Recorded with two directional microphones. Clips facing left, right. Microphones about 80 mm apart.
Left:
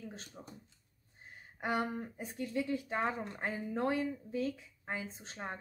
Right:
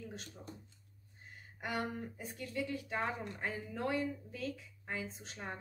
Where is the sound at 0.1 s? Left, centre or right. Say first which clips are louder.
Right 1 dB; left.